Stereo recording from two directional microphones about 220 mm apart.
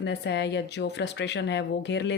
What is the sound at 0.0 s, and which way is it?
Speech, 50° left (ahead or behind).